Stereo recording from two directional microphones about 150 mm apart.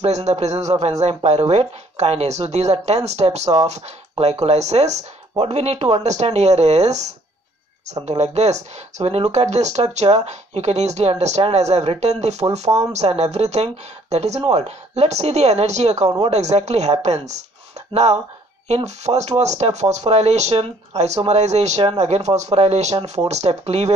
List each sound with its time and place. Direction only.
0.0 s speech: 45° right (ahead or behind)
18.9 s speech: 50° right (ahead or behind)